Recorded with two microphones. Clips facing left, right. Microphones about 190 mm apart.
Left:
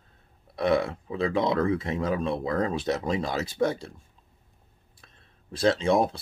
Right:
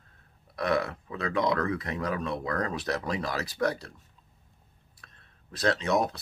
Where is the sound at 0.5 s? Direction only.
25° left (ahead or behind).